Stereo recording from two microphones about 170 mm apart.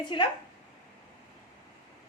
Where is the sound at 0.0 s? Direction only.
30° left (ahead or behind).